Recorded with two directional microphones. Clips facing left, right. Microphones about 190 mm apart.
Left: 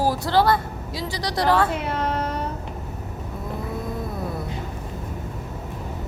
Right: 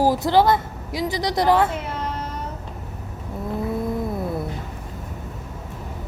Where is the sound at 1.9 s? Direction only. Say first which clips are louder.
Left 4 dB; 65° left (ahead or behind).